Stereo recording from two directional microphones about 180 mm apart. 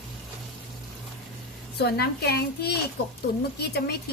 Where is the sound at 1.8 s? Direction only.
60° left (ahead or behind).